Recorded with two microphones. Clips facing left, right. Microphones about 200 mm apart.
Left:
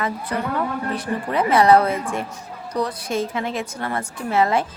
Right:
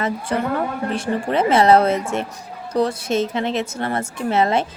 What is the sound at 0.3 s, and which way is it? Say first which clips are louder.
A woman's voice: right 3 dB; 25° right (ahead or behind).